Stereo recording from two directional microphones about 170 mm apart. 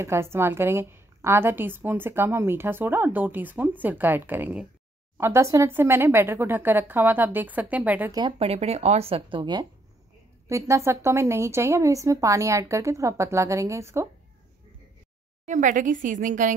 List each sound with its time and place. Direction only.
0.0 s a woman's voice: 15° right (ahead or behind)
8.1 s speech: 25° right (ahead or behind)
8.4 s a woman's voice: 40° right (ahead or behind); by 14.0 s 15° right (ahead or behind)
15.4 s a woman's voice: 45° right (ahead or behind)